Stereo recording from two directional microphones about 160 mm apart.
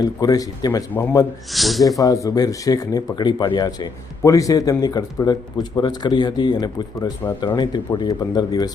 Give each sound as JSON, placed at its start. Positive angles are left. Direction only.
{"t": 0.0, "sound": "speech", "side_deg": 25}
{"t": 1.5, "sound": "speech", "side_deg": 0}
{"t": 2.2, "sound": "speech", "side_deg": 20}